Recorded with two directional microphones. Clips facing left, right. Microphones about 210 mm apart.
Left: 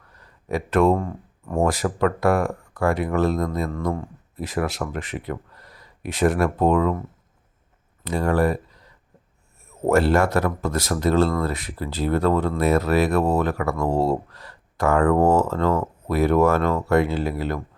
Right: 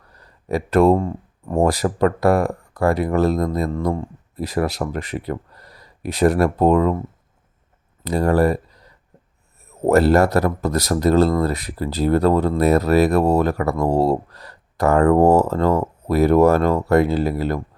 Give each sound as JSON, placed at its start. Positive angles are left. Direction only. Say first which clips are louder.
{"t": 0.1, "sound": "a sound", "louder": "right 3 dB", "side_deg": -35}
{"t": 1.5, "sound": "speech", "louder": "right 4 dB", "side_deg": -35}
{"t": 8.0, "sound": "speech", "louder": "right 4 dB", "side_deg": -35}
{"t": 9.8, "sound": "speech", "louder": "right 4 dB", "side_deg": -40}